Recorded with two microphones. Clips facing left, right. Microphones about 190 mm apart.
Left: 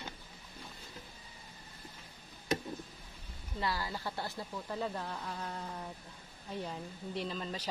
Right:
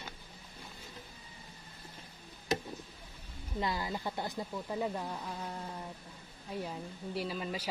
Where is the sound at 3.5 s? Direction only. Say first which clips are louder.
Right 2 dB; 20° right (ahead or behind).